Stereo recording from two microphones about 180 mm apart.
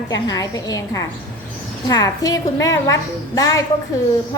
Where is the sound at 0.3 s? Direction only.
20° left (ahead or behind).